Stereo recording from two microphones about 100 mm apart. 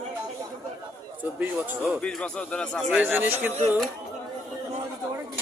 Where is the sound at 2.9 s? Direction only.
15° right (ahead or behind).